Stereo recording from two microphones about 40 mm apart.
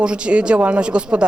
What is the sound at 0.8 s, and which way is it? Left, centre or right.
Speech, right.